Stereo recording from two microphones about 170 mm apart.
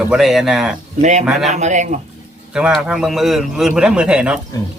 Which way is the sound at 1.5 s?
45° right (ahead or behind).